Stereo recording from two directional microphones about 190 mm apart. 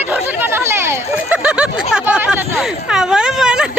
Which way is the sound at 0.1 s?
10° right (ahead or behind).